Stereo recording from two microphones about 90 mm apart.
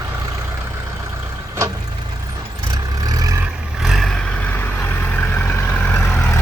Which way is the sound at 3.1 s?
45° right (ahead or behind).